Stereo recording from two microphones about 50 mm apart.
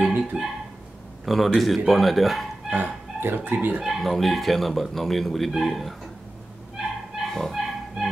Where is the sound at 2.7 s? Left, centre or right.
Right.